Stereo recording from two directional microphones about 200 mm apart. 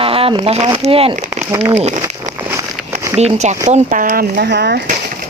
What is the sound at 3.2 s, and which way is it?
A woman's voice, 35° right (ahead or behind).